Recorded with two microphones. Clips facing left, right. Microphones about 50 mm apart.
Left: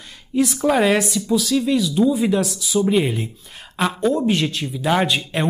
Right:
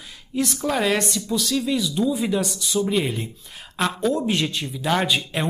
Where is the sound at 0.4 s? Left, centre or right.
Centre.